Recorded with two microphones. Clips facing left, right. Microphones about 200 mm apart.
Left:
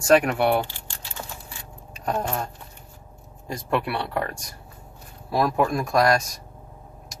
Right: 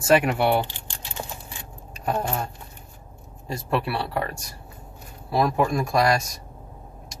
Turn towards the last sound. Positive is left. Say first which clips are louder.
# left 1 dB
turn(degrees=0)  # may be behind; listen again after turning